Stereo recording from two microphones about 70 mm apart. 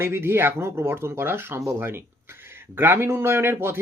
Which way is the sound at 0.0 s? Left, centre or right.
Right.